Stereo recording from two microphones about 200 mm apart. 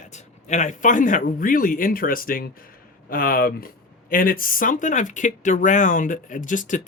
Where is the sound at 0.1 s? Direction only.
35° left (ahead or behind).